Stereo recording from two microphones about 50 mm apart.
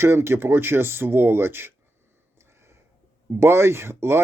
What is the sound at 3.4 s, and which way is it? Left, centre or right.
Speech, right.